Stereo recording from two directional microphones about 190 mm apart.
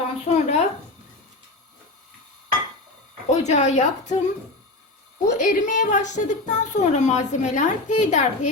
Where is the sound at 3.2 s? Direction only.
35° left (ahead or behind).